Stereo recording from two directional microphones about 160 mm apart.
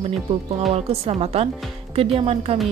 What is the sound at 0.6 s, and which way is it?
Speech, 40° right (ahead or behind).